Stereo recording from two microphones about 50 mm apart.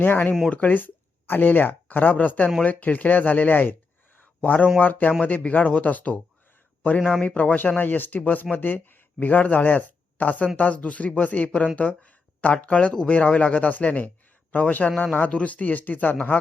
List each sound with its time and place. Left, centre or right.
0.0 s speech: left
7.2 s speech: left